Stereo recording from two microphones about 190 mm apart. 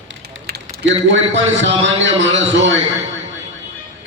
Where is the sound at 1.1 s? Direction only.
75° right (ahead or behind).